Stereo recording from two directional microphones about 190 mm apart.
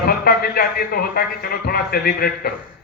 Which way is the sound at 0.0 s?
55° left (ahead or behind).